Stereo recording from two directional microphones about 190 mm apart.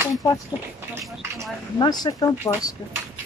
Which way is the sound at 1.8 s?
20° left (ahead or behind).